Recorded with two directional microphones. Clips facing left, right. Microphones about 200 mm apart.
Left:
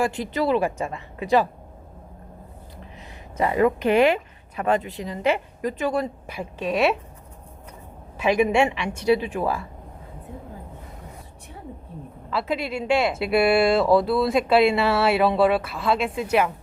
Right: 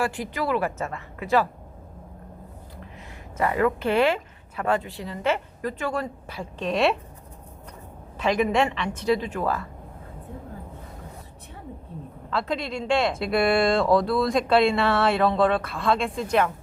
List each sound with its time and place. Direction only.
0.0 s a woman's voice: 20° left (ahead or behind)
3.3 s speech: 20° left (ahead or behind); by 6.9 s 5° left (ahead or behind)
8.2 s speech: 10° left (ahead or behind)
12.3 s speech: 5° left (ahead or behind)